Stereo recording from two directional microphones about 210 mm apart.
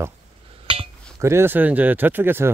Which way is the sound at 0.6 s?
25° right (ahead or behind).